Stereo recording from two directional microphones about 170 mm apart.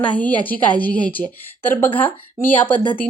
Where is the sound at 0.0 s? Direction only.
10° left (ahead or behind).